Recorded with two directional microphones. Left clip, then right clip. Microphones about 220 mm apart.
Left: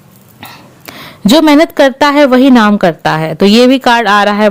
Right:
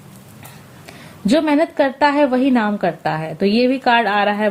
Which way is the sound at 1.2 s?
50° left (ahead or behind).